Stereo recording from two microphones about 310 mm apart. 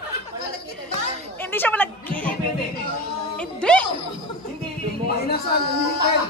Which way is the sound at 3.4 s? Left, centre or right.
Centre.